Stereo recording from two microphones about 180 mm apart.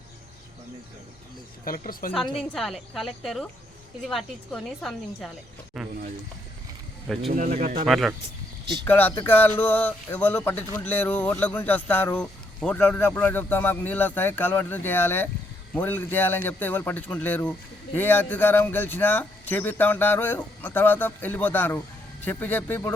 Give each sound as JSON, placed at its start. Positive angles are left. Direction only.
{"t": 1.6, "sound": "speech", "side_deg": 50}
{"t": 2.4, "sound": "a woman's voice", "side_deg": 0}
{"t": 7.3, "sound": "speech", "side_deg": -50}
{"t": 7.9, "sound": "a woman's voice", "side_deg": 0}
{"t": 8.8, "sound": "speech", "side_deg": 10}